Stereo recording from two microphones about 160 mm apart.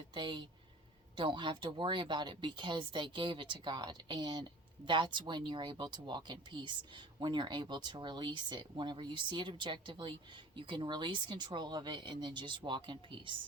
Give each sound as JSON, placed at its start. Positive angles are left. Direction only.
{"t": 0.1, "sound": "speech", "side_deg": -25}